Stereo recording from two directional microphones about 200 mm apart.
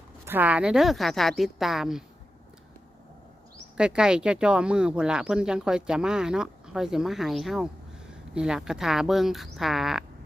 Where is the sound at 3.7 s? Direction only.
5° right (ahead or behind).